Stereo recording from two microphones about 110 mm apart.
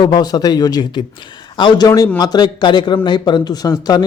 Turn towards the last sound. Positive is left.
turn(degrees=35)  # may be behind; listen again after turning